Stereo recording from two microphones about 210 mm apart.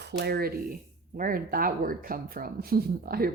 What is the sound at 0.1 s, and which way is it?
Speech, 50° right (ahead or behind).